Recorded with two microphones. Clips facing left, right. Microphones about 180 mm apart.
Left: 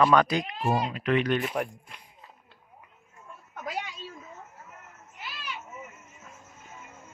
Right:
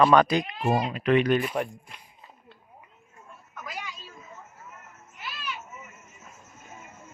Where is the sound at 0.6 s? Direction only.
55° right (ahead or behind).